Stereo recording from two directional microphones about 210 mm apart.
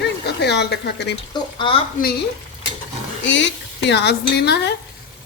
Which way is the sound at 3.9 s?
55° left (ahead or behind).